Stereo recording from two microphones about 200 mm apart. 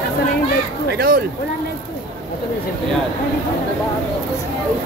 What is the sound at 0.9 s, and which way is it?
Speech, 50° right (ahead or behind).